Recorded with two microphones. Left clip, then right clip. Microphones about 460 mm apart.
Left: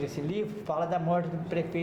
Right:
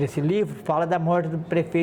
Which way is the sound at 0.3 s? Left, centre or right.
Right.